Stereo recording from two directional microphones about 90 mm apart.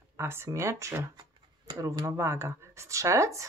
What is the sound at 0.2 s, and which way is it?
Speech, 30° right (ahead or behind).